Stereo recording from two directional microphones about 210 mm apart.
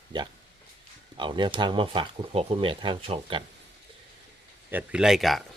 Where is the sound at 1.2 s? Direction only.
25° right (ahead or behind).